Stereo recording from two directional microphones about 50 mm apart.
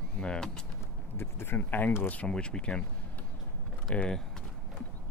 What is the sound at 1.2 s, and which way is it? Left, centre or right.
Speech, left.